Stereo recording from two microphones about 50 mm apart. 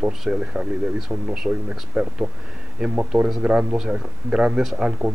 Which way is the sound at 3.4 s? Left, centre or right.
Right.